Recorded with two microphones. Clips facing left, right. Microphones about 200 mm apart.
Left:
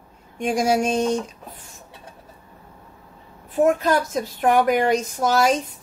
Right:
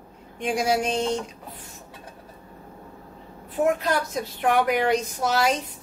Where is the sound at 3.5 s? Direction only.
45° left (ahead or behind).